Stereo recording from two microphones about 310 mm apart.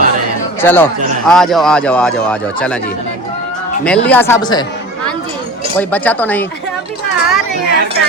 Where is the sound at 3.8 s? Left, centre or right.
Centre.